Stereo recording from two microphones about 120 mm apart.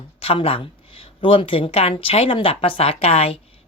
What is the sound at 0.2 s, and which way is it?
A woman's voice, 50° left (ahead or behind).